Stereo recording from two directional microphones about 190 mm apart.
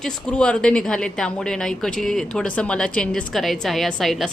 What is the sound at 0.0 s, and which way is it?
A woman's voice, 5° left (ahead or behind).